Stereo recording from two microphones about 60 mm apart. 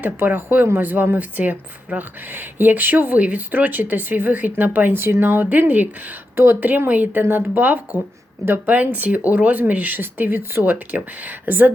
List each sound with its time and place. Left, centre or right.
0.0 s speech: right
5.5 s speech: right
6.3 s speech: right